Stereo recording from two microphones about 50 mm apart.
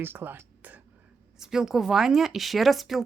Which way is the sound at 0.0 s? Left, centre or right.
Right.